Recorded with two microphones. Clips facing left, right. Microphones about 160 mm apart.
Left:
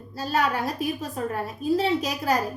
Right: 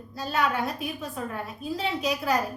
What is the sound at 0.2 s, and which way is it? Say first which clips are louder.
A woman's voice: left 2 dB; 35° left (ahead or behind).